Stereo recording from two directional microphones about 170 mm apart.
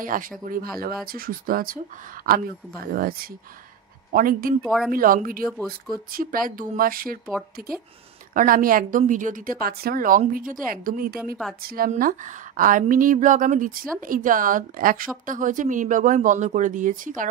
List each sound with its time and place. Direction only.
0.0 s a woman's voice: 55° right (ahead or behind)
4.6 s speech: centre (ahead or behind)
4.9 s a woman's voice: 55° right (ahead or behind)